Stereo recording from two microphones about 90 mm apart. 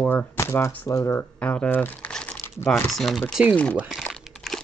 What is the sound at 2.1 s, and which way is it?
Crumpling, 10° left (ahead or behind).